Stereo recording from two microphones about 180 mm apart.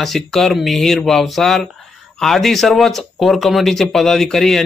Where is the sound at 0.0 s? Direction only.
Centre (ahead or behind).